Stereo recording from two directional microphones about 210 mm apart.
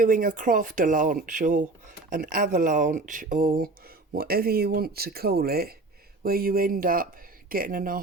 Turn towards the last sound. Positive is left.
turn(degrees=-40)  # may be behind; listen again after turning